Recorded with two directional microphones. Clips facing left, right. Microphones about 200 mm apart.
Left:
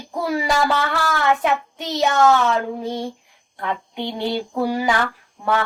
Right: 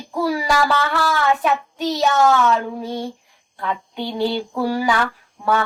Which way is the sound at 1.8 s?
20° left (ahead or behind).